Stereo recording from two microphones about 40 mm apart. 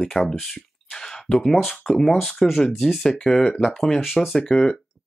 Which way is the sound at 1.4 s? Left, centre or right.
Centre.